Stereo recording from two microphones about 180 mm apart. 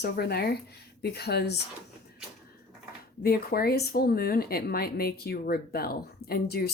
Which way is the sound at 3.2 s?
60° left (ahead or behind).